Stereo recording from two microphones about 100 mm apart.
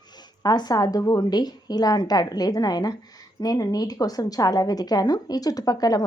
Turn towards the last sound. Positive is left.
turn(degrees=40)  # may be behind; listen again after turning